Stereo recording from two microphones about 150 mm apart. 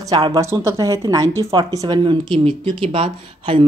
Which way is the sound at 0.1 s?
25° right (ahead or behind).